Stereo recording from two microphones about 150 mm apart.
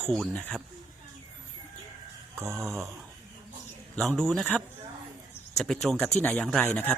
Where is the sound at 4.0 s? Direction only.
5° left (ahead or behind).